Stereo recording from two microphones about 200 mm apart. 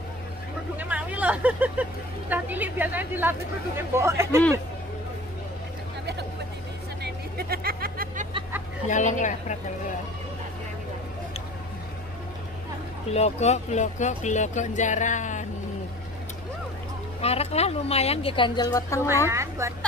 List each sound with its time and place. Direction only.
0.7 s speech: 5° right (ahead or behind)
7.0 s vehicle: 50° right (ahead or behind)
8.8 s speech: 40° left (ahead or behind)
13.1 s speech: 35° left (ahead or behind)
17.2 s speech: 30° left (ahead or behind)
19.2 s speech: 15° right (ahead or behind)